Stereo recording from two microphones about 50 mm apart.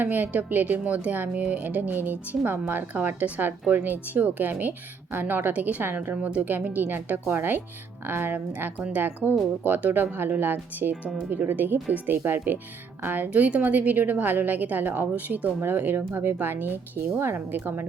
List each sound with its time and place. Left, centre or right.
0.0 s a woman's voice: right
1.3 s a woman's voice: right
5.5 s a woman's voice: right
5.8 s a woman's voice: right
13.3 s a woman's voice: right
17.2 s speech: right